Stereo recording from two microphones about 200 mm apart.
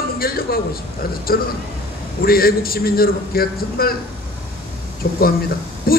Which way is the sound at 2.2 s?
50° left (ahead or behind).